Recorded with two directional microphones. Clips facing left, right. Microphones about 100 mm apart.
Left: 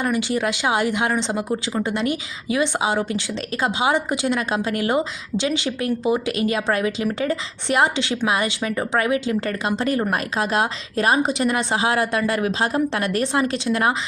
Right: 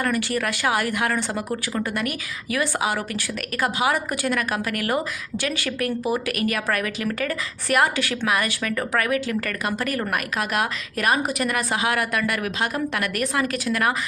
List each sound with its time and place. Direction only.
0.0 s speech: 20° left (ahead or behind)